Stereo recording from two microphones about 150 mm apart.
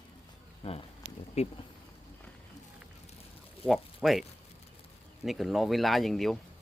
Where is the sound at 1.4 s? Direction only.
45° left (ahead or behind).